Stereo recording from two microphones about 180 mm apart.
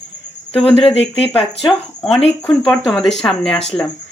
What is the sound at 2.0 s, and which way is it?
Speech, centre (ahead or behind).